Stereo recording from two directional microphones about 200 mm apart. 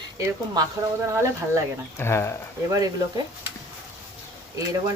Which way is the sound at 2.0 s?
15° left (ahead or behind).